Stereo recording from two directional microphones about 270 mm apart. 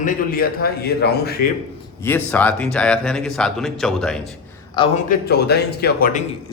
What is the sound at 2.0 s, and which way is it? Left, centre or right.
Speech, centre.